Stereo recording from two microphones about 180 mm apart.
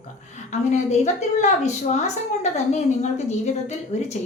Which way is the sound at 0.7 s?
40° left (ahead or behind).